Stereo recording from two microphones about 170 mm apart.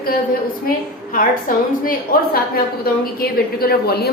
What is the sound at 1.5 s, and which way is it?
A woman's voice, 55° left (ahead or behind).